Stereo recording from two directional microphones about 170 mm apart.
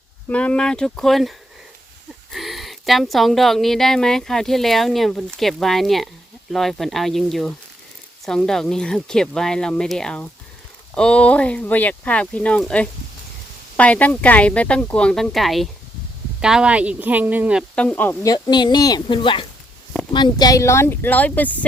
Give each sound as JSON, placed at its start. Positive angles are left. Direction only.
{"t": 0.3, "sound": "speech", "side_deg": 5}
{"t": 17.7, "sound": "speech", "side_deg": 10}
{"t": 18.3, "sound": "a woman's voice", "side_deg": 25}